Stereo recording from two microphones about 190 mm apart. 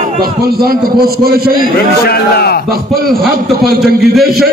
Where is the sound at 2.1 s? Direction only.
55° left (ahead or behind).